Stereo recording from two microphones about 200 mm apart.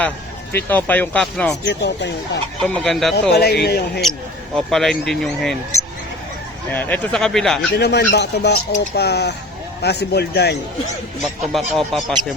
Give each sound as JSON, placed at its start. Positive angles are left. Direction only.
{"t": 0.7, "sound": "speech", "side_deg": 10}
{"t": 1.6, "sound": "speech", "side_deg": 60}
{"t": 2.6, "sound": "speech", "side_deg": 5}
{"t": 3.3, "sound": "speech", "side_deg": 55}
{"t": 4.5, "sound": "speech", "side_deg": 0}
{"t": 6.7, "sound": "speech", "side_deg": 10}
{"t": 7.7, "sound": "speech", "side_deg": 55}
{"t": 11.2, "sound": "speech", "side_deg": 0}